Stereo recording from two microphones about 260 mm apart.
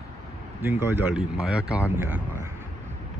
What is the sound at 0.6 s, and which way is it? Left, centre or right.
Speech, centre.